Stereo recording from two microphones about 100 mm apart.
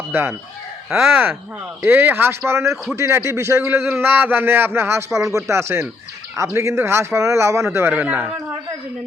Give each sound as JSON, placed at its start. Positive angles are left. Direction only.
{"t": 0.1, "sound": "a man's voice", "side_deg": -20}